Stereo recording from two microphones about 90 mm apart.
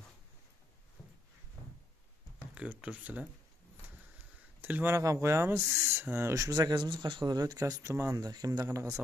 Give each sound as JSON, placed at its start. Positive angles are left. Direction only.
{"t": 2.5, "sound": "speech", "side_deg": -15}
{"t": 4.6, "sound": "speech", "side_deg": -20}
{"t": 4.9, "sound": "speech", "side_deg": -35}
{"t": 6.7, "sound": "speech", "side_deg": -60}